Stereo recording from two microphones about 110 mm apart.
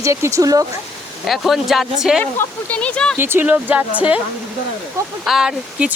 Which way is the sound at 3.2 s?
20° right (ahead or behind).